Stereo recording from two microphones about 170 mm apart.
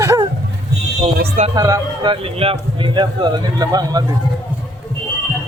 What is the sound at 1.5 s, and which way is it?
A man's voice, 20° right (ahead or behind).